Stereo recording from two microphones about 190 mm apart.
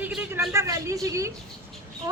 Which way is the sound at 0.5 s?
15° right (ahead or behind).